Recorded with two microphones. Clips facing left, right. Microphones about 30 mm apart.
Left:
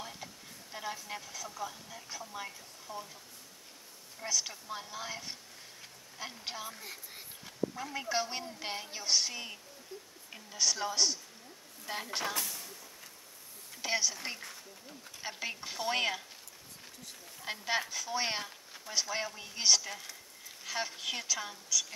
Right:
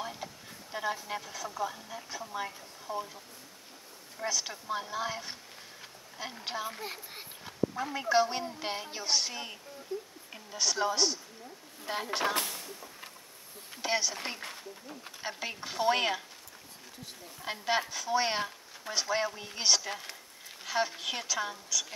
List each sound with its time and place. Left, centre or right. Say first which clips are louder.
0.0 s speech: right 5 dB; centre
4.2 s speech: right 2 dB; centre
6.4 s speech: right 6 dB; centre
6.7 s speech: right 6 dB; right; by 9.6 s centre
9.9 s speech: right 10 dB; right
10.3 s speech: right 1 dB; centre
12.4 s a sound: right 5 dB; right
13.7 s a woman's voice: right 2 dB; centre
14.4 s speech: right 5 dB; right
15.2 s speech: right 2 dB; centre
17.5 s speech: right 3 dB; centre